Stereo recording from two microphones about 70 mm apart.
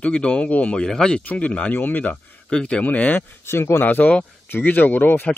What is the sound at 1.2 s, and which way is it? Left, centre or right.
Speech, left.